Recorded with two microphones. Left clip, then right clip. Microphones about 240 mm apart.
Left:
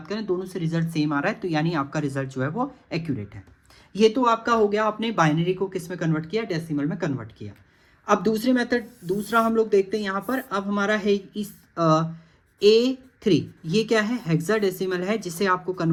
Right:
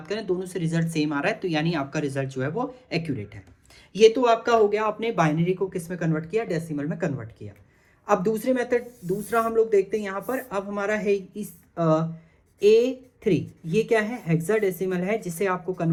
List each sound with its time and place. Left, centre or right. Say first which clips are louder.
0.1 s speech: even; left
0.3 s speech: even; centre
0.7 s speech: left 1 dB; left